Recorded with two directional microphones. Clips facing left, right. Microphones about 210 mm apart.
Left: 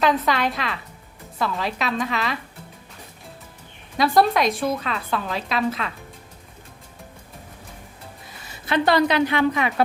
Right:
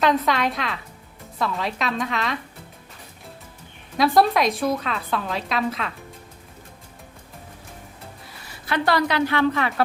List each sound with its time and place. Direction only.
0.0 s a woman's voice: centre (ahead or behind)
3.9 s a woman's voice: centre (ahead or behind)
8.6 s a woman's voice: 20° left (ahead or behind)